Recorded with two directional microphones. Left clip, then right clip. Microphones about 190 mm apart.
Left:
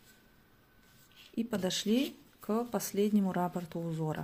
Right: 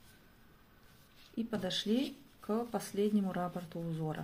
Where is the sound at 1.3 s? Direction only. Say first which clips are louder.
Left 3 dB; 35° left (ahead or behind).